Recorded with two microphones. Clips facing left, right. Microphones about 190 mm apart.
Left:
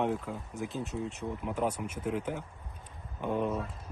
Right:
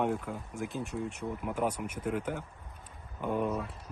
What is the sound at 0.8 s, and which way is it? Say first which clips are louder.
Speech: even; 20° left (ahead or behind).